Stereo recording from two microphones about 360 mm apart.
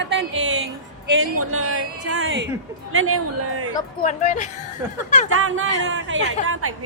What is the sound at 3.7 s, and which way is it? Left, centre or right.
Speech, centre.